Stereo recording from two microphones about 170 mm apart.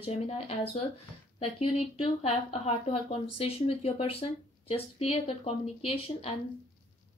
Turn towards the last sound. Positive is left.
turn(degrees=35)  # may be behind; listen again after turning